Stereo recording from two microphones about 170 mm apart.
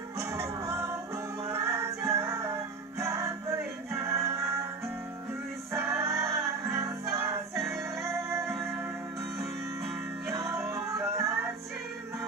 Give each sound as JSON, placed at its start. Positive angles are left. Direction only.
{"t": 0.3, "sound": "music", "side_deg": -20}
{"t": 5.8, "sound": "music", "side_deg": -15}
{"t": 7.5, "sound": "music", "side_deg": 0}
{"t": 8.0, "sound": "music", "side_deg": -15}
{"t": 9.4, "sound": "music", "side_deg": 0}
{"t": 10.7, "sound": "music", "side_deg": -20}